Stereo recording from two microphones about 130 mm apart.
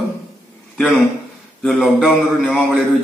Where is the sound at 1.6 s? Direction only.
Centre (ahead or behind).